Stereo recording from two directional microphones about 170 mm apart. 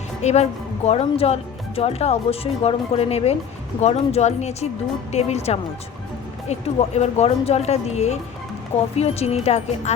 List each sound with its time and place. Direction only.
0.2 s speech: 40° left (ahead or behind)